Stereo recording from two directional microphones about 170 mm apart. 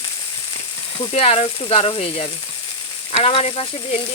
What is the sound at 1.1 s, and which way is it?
Speech, 35° left (ahead or behind).